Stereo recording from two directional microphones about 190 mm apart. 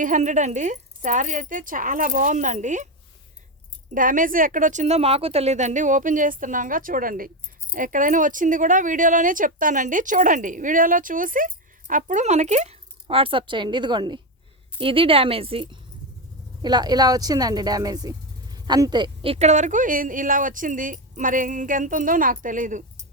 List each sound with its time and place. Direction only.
0.0 s speech: 40° right (ahead or behind)
3.9 s speech: 45° right (ahead or behind)